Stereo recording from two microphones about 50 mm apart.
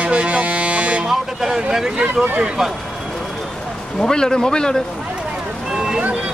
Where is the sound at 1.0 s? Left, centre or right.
Centre.